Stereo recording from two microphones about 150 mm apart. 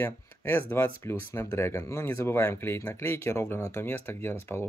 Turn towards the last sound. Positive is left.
turn(degrees=15)  # may be behind; listen again after turning